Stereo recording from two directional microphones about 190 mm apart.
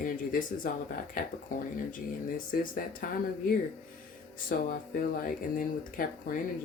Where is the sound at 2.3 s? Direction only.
45° left (ahead or behind).